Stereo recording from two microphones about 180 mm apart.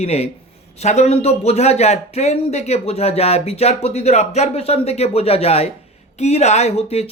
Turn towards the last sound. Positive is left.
turn(degrees=35)  # may be behind; listen again after turning